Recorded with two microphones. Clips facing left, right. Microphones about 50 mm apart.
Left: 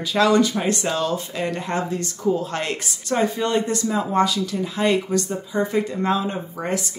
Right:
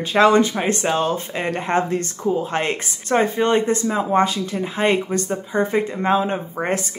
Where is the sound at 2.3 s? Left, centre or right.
Right.